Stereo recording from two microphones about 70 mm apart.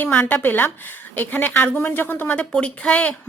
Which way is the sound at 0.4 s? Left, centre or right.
Left.